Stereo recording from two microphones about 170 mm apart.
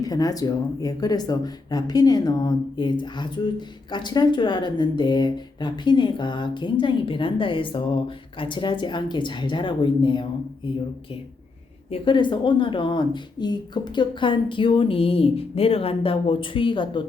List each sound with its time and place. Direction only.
0.0 s speech: 20° left (ahead or behind)
11.9 s speech: 30° left (ahead or behind)